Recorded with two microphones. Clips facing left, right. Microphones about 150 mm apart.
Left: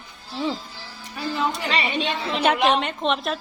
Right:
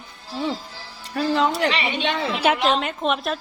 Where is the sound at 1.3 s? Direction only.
90° right.